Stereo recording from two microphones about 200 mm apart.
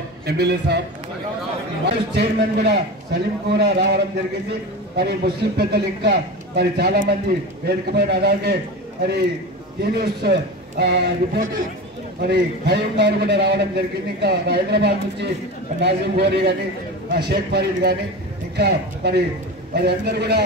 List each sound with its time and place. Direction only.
0.3 s a man's voice: 55° right (ahead or behind)
2.1 s a man's voice: 55° right (ahead or behind)
9.9 s a man's voice: 55° right (ahead or behind)